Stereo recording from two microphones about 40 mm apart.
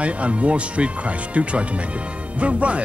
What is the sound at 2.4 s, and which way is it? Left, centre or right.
Speech, right.